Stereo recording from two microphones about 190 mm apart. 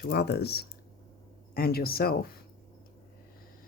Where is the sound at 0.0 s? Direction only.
55° left (ahead or behind).